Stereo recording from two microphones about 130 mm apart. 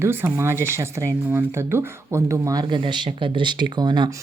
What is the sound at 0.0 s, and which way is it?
Speech, 20° right (ahead or behind).